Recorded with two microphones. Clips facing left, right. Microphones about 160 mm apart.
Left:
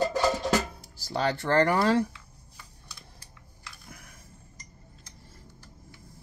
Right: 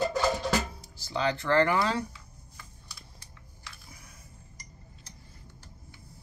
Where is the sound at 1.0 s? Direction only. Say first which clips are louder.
Left 1 dB; 45° left (ahead or behind).